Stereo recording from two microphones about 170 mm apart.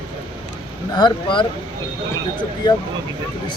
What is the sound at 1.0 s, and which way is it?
Speech, 30° left (ahead or behind).